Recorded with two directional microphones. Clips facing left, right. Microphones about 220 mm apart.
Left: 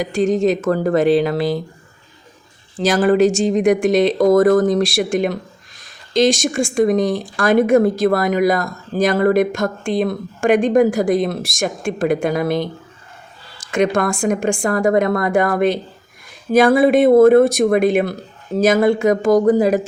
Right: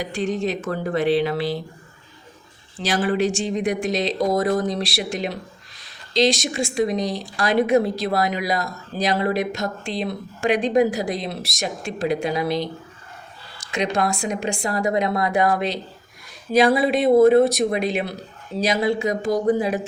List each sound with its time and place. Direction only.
0.0 s speech: 45° left (ahead or behind)
2.8 s speech: 45° left (ahead or behind)